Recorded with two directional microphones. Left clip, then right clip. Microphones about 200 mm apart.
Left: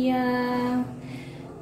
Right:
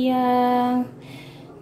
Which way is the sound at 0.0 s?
40° right (ahead or behind).